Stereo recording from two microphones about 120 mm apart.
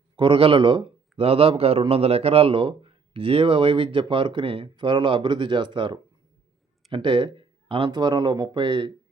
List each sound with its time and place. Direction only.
0.2 s speech: 45° right (ahead or behind)